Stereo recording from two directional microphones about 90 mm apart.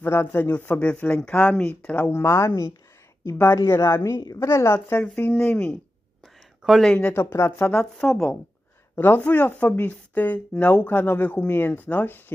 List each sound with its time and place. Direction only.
0.0 s speech: 25° left (ahead or behind)
5.0 s speech: 15° left (ahead or behind)
6.2 s a sound: centre (ahead or behind)
7.1 s speech: 30° left (ahead or behind)
7.9 s speech: 10° left (ahead or behind)